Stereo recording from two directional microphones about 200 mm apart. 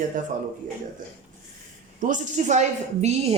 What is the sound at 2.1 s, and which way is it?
A woman's voice, 40° right (ahead or behind).